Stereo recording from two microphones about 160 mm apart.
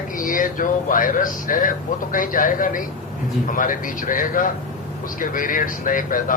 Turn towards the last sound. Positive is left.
turn(degrees=55)  # may be behind; listen again after turning